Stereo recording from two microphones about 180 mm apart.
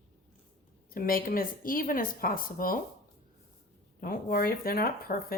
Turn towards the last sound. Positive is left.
turn(degrees=55)  # may be behind; listen again after turning